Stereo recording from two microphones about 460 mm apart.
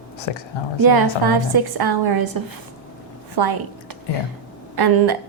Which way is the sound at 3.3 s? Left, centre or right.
Right.